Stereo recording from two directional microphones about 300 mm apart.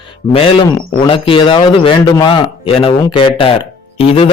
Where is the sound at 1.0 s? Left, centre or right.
Centre.